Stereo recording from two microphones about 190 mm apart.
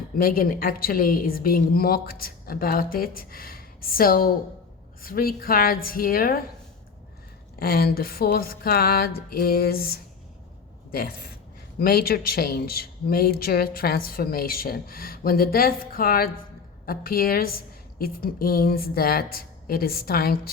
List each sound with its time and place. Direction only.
0.2 s speech: 50° left (ahead or behind)
7.6 s speech: 55° left (ahead or behind)